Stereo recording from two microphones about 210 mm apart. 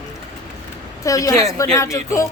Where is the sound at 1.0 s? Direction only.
15° left (ahead or behind).